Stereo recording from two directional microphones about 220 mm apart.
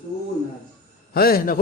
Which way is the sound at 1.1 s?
40° left (ahead or behind).